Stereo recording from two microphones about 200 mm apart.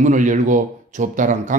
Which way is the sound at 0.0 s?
40° right (ahead or behind).